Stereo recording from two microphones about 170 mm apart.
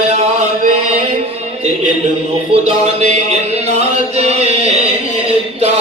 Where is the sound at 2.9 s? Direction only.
40° right (ahead or behind).